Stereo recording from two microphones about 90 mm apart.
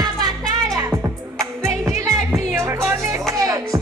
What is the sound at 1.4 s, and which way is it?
Music, 30° right (ahead or behind).